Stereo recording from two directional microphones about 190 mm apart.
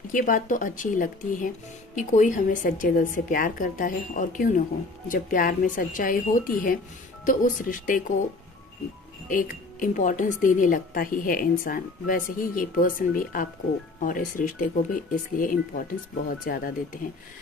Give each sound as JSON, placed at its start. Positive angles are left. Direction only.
{"t": 0.1, "sound": "speech", "side_deg": 45}
{"t": 9.3, "sound": "speech", "side_deg": 45}